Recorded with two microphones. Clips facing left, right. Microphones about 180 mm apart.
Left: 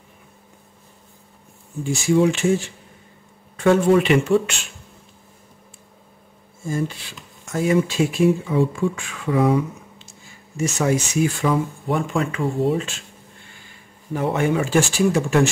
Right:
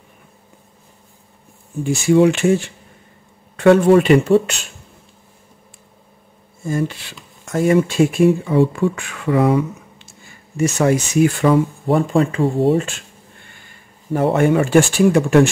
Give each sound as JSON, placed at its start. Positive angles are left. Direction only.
{"t": 1.9, "sound": "speech", "side_deg": -65}
{"t": 6.6, "sound": "speech", "side_deg": -65}
{"t": 11.9, "sound": "speech", "side_deg": -35}
{"t": 14.1, "sound": "speech", "side_deg": -50}